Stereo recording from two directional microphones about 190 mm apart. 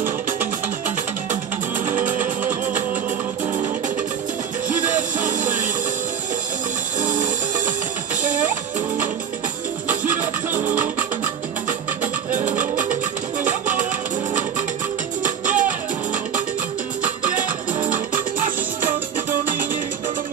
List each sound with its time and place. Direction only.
0.0 s music: 10° right (ahead or behind)
2.0 s music: 40° right (ahead or behind)
4.6 s music: 40° right (ahead or behind)
7.0 s music: 40° right (ahead or behind)
10.6 s music: 40° right (ahead or behind)
12.3 s music: 40° right (ahead or behind)
15.2 s music: 40° right (ahead or behind)